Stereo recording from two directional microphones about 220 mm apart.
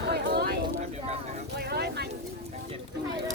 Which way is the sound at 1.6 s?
50° right (ahead or behind).